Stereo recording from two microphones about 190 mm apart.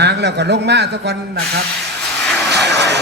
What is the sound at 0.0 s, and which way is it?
Speech, 60° right (ahead or behind).